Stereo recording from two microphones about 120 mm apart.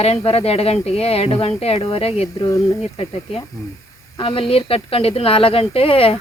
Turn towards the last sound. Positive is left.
turn(degrees=50)  # may be behind; listen again after turning